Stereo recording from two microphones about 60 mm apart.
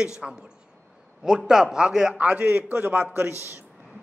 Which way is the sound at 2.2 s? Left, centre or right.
Right.